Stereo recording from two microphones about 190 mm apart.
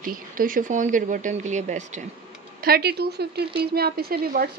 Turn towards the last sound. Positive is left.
turn(degrees=-50)  # may be behind; listen again after turning